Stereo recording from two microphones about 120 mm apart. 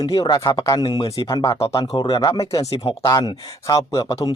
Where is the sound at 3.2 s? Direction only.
40° left (ahead or behind).